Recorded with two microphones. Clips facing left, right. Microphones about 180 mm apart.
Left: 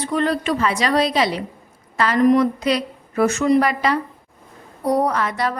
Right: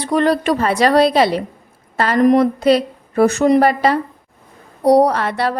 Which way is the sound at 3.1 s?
35° right (ahead or behind).